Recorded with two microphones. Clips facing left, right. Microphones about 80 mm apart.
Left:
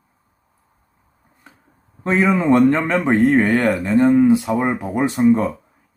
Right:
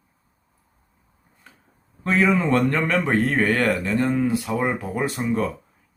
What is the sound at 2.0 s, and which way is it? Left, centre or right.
Speech, left.